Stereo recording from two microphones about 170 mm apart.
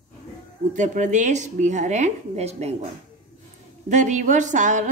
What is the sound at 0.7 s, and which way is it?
A woman's voice, 45° right (ahead or behind).